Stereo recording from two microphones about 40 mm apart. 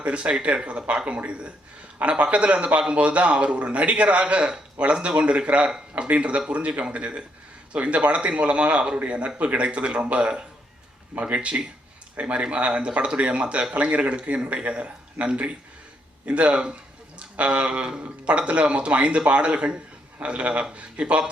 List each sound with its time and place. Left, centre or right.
0.0 s a man's voice: right